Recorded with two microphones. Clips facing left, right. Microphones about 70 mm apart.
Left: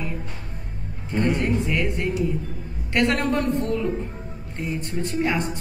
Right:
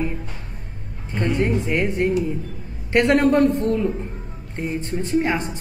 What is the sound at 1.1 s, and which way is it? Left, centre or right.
Mantra, centre.